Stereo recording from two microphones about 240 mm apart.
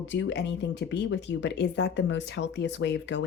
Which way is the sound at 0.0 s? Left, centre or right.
Left.